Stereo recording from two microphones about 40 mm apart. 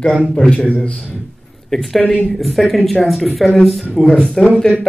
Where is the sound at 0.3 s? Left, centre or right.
Left.